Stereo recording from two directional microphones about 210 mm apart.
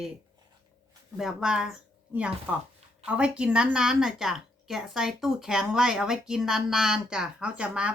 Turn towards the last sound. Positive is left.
turn(degrees=-5)  # may be behind; listen again after turning